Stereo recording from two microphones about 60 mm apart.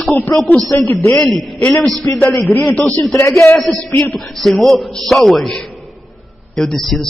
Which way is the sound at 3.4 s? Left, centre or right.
Left.